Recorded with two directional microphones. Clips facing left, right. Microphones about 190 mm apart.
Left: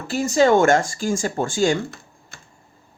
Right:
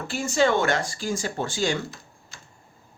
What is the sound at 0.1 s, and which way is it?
Speech, 40° left (ahead or behind).